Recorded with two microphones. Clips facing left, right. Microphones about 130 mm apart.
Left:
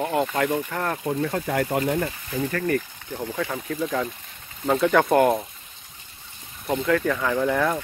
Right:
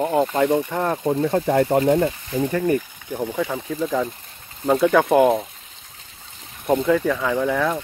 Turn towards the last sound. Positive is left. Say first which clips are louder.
# right 1 dB
turn(degrees=-5)  # may be behind; listen again after turning